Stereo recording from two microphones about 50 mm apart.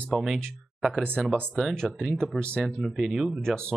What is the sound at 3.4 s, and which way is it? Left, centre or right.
Speech, centre.